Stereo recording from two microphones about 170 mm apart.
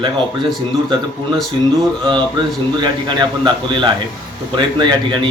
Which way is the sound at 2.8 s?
25° right (ahead or behind).